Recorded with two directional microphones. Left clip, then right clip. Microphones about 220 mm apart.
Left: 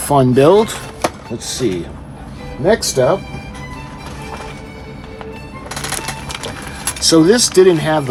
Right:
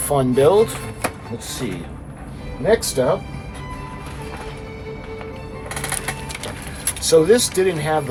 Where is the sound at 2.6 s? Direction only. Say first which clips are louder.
Left 4 dB; 45° left (ahead or behind).